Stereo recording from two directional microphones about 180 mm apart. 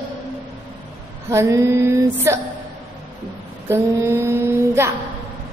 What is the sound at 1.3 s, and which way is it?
A woman's voice, 15° right (ahead or behind).